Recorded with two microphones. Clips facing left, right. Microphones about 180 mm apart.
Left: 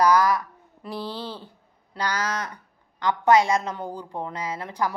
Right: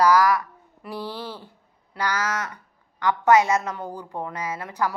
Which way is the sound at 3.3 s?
30° left (ahead or behind).